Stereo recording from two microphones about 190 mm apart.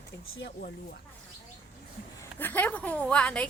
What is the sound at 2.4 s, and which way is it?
A woman's voice, 10° left (ahead or behind).